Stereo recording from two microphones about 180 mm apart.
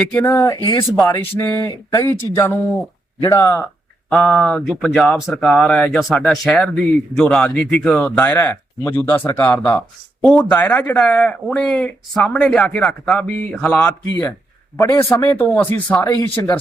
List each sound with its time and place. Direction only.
0.1 s speech: 10° left (ahead or behind)
4.1 s speech: 5° left (ahead or behind)
14.1 s speech: 20° left (ahead or behind)